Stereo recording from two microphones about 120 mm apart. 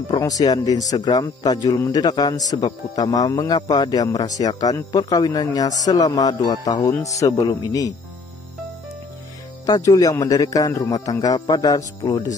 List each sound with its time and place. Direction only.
0.1 s speech: 30° left (ahead or behind)
9.7 s speech: 30° left (ahead or behind)